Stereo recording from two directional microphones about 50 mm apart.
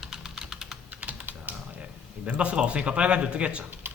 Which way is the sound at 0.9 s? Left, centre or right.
Right.